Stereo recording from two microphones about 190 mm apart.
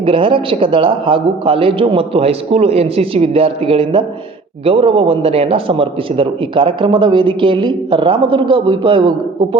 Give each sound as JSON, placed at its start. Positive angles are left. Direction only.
{"t": 0.0, "sound": "a man's voice", "side_deg": -30}